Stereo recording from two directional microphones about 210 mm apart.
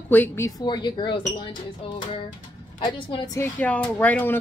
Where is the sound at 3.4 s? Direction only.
5° left (ahead or behind).